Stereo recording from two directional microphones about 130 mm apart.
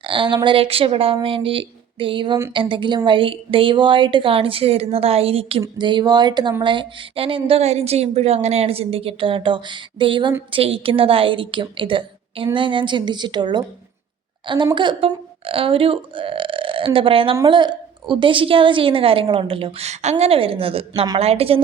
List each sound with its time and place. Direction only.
0.0 s a woman's voice: 40° right (ahead or behind)